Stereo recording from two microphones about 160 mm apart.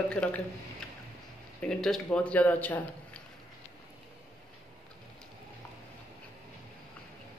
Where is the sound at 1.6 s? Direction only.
5° left (ahead or behind).